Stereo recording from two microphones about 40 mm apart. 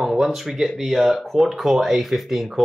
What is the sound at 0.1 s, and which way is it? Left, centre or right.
Speech, centre.